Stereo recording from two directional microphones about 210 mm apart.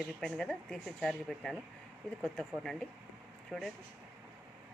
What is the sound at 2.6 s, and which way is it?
Speech, centre (ahead or behind).